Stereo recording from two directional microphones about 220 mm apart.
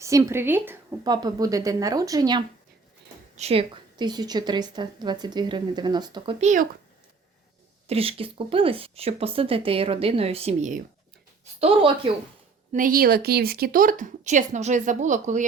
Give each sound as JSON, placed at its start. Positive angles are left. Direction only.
{"t": 0.0, "sound": "a woman's voice", "side_deg": -15}
{"t": 6.4, "sound": "speech", "side_deg": -35}
{"t": 7.9, "sound": "a woman's voice", "side_deg": -25}
{"t": 12.7, "sound": "speech", "side_deg": -40}